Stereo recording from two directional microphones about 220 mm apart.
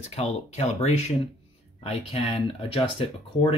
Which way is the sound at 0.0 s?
30° left (ahead or behind).